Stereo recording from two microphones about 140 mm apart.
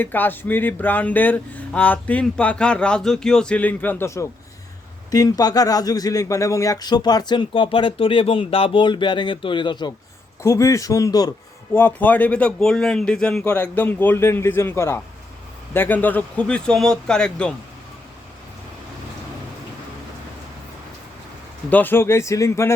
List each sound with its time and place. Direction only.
0.0 s speech: 15° left (ahead or behind); by 9.9 s 35° left (ahead or behind)
10.4 s speech: 20° left (ahead or behind)
11.7 s speech: 15° left (ahead or behind)
21.7 s speech: 15° left (ahead or behind)